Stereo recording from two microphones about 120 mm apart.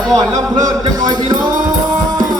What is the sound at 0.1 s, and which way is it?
Music, 30° right (ahead or behind).